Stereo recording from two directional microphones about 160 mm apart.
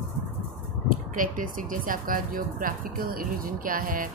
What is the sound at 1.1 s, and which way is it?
Speech, 55° right (ahead or behind).